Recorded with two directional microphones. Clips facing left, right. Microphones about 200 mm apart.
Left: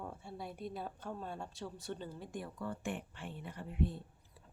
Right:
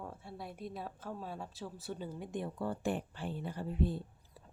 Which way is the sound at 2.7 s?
35° right (ahead or behind).